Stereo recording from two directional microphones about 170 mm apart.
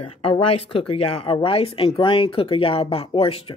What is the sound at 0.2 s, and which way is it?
Speech, 30° left (ahead or behind).